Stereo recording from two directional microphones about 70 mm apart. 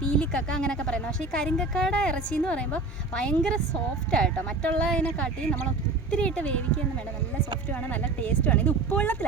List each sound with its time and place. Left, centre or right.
0.0 s speech: centre
7.7 s speech: left